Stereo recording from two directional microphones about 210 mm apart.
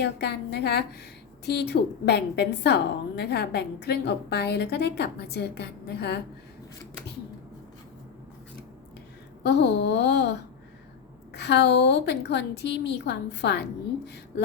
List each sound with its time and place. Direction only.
0.0 s a woman's voice: 55° left (ahead or behind)
9.4 s a woman's voice: 55° left (ahead or behind)
11.3 s a woman's voice: 55° left (ahead or behind)